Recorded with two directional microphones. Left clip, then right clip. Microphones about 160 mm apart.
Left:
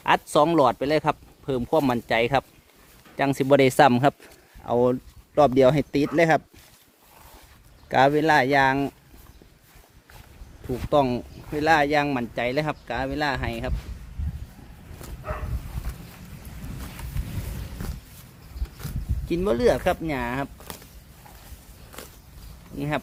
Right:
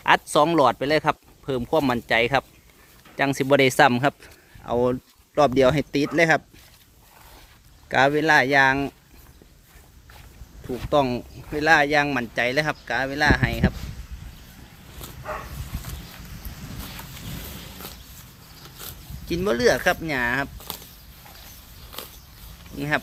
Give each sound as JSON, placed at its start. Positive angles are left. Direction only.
{"t": 0.0, "sound": "speech", "side_deg": 10}
{"t": 7.9, "sound": "speech", "side_deg": 20}
{"t": 10.9, "sound": "speech", "side_deg": 10}
{"t": 19.3, "sound": "speech", "side_deg": 10}